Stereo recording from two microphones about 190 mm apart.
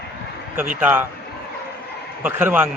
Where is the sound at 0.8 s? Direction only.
10° right (ahead or behind).